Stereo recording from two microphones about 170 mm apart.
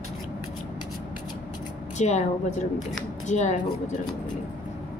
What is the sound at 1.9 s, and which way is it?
Speech, 45° left (ahead or behind).